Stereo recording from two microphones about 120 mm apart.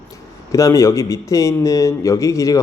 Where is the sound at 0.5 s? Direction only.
25° left (ahead or behind).